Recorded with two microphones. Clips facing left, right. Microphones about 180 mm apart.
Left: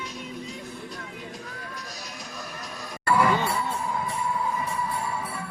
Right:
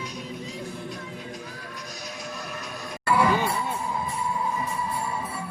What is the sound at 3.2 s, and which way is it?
Music, 15° right (ahead or behind).